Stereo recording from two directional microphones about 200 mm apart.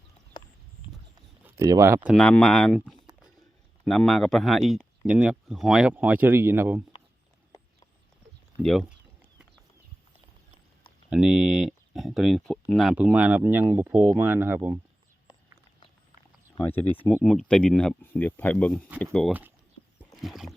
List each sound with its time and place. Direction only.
0.4 s vehicle: 20° left (ahead or behind)
1.5 s speech: 15° right (ahead or behind)
2.0 s speech: 5° left (ahead or behind)
8.6 s speech: centre (ahead or behind)
11.1 s speech: 5° right (ahead or behind)
16.6 s speech: 10° left (ahead or behind)
19.3 s speech: 10° right (ahead or behind)